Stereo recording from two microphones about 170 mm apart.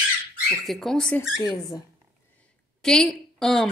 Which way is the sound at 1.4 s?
25° left (ahead or behind).